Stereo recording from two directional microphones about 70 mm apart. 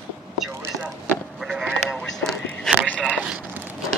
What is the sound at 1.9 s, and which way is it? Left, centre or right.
Whispering, centre.